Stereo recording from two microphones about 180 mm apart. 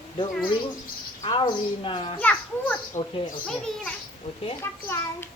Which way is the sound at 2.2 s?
10° left (ahead or behind).